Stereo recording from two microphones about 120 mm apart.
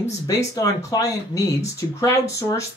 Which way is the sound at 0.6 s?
30° left (ahead or behind).